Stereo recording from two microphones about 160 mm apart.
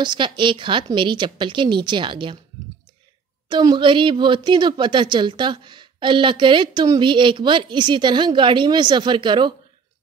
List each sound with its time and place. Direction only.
0.0 s a woman's voice: 30° right (ahead or behind)
3.4 s speech: 30° right (ahead or behind)